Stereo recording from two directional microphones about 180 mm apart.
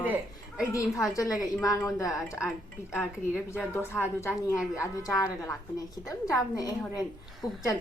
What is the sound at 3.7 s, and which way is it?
A woman's voice, 15° left (ahead or behind).